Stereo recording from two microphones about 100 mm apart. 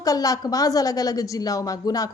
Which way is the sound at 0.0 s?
35° left (ahead or behind).